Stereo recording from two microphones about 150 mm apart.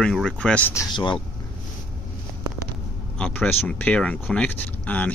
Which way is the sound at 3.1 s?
5° left (ahead or behind).